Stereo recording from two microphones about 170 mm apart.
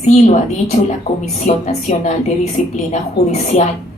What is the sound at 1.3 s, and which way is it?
A woman's voice, 40° left (ahead or behind).